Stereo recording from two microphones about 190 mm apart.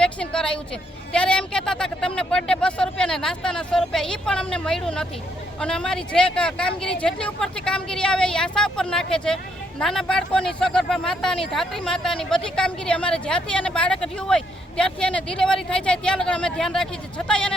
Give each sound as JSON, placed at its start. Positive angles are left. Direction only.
{"t": 0.0, "sound": "speech", "side_deg": 5}